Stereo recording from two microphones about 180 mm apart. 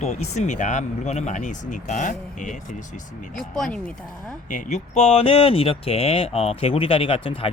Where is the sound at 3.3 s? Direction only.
Centre (ahead or behind).